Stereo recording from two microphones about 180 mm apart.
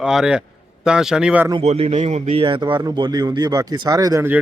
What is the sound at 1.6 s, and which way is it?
Speech, 35° right (ahead or behind).